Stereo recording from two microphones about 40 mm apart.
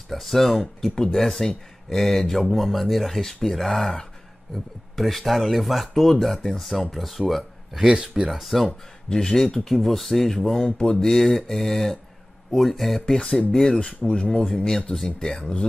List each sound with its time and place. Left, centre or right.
0.1 s speech: centre
7.8 s speech: centre
8.3 s speech: centre
9.1 s speech: centre
11.1 s speech: centre
13.0 s speech: centre
14.0 s speech: left